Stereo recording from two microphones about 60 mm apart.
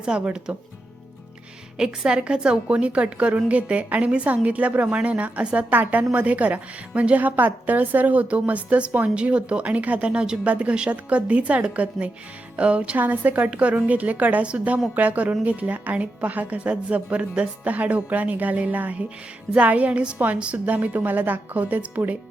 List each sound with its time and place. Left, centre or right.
0.1 s speech: centre
2.0 s a woman's voice: centre